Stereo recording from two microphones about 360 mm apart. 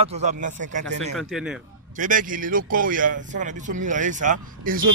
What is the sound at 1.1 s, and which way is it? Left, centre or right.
Speech, centre.